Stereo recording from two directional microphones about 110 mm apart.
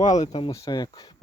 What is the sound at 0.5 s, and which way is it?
Speech, 35° left (ahead or behind).